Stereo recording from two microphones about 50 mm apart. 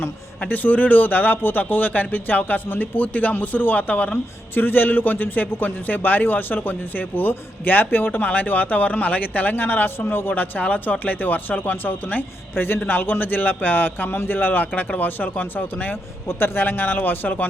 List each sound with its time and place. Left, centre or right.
0.4 s speech: left